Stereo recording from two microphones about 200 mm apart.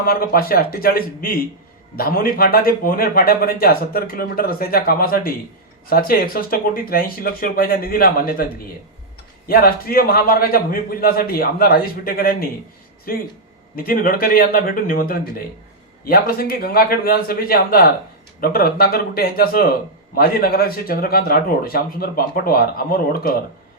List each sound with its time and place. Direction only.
0.0 s speech: 45° left (ahead or behind)
9.5 s speech: 45° left (ahead or behind)